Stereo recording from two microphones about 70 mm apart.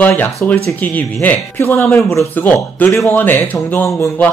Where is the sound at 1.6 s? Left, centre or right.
Left.